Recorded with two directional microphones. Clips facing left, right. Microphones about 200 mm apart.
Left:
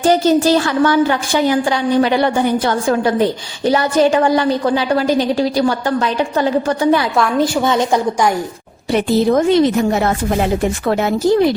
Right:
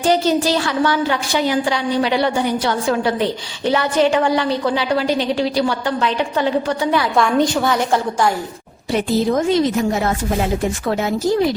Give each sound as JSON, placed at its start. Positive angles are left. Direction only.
{"t": 0.0, "sound": "a woman's voice", "side_deg": 50}
{"t": 7.2, "sound": "a woman's voice", "side_deg": 0}
{"t": 7.6, "sound": "a woman's voice", "side_deg": 20}
{"t": 8.9, "sound": "speech", "side_deg": 65}